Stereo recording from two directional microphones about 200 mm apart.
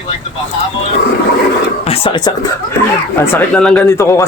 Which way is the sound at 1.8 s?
30° left (ahead or behind).